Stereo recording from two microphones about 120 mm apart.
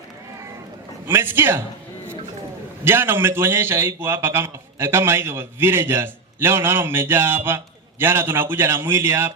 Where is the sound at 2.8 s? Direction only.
20° right (ahead or behind).